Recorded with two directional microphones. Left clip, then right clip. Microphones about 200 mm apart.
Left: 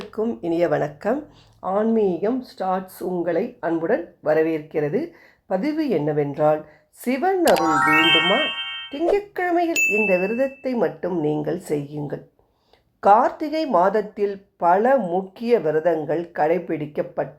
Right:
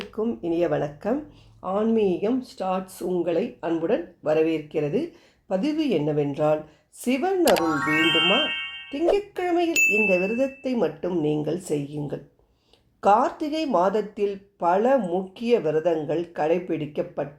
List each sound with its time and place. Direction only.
0.1 s speech: 20° left (ahead or behind)
7.4 s speech: centre (ahead or behind)
9.1 s speech: 20° left (ahead or behind)
9.7 s speech: centre (ahead or behind)
10.2 s speech: 40° left (ahead or behind)
10.6 s speech: 20° left (ahead or behind)